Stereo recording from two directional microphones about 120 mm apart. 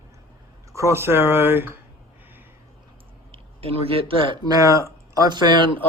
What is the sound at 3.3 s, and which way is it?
Speech, 55° right (ahead or behind).